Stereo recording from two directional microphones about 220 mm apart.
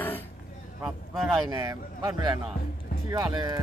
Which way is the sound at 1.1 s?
Centre (ahead or behind).